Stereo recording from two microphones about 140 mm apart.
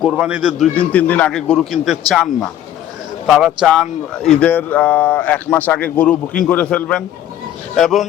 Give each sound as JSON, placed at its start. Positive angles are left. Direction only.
{"t": 0.0, "sound": "a man's voice", "side_deg": -5}
{"t": 0.7, "sound": "a man's voice", "side_deg": 10}